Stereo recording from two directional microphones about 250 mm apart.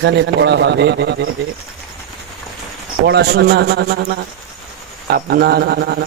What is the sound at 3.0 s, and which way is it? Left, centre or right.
Speech, right.